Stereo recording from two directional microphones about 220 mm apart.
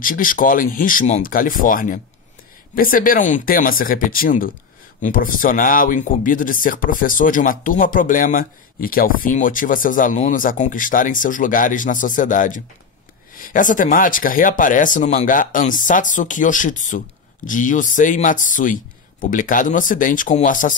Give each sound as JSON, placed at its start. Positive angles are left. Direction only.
{"t": 0.0, "sound": "speech", "side_deg": 40}